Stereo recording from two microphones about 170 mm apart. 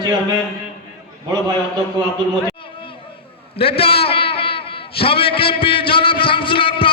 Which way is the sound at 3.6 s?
35° left (ahead or behind).